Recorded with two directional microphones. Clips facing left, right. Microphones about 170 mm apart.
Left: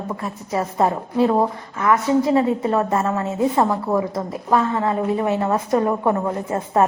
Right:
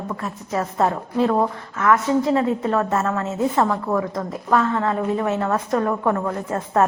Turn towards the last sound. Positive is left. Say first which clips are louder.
# left 1 dB
turn(degrees=15)  # may be behind; listen again after turning